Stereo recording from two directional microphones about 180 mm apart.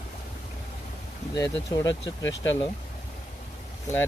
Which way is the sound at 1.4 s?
20° left (ahead or behind).